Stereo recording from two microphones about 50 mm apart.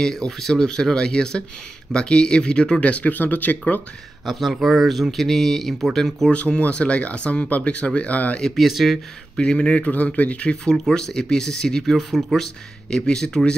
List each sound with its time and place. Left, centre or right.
0.0 s speech: centre; by 3.8 s left
4.3 s speech: centre
6.3 s speech: left
8.5 s speech: centre
9.4 s speech: centre
10.5 s speech: centre
12.9 s speech: centre